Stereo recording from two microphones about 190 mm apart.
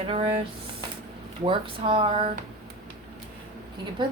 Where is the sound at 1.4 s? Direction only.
25° right (ahead or behind).